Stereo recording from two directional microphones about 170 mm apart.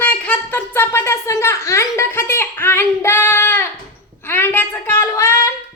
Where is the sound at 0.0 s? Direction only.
10° left (ahead or behind).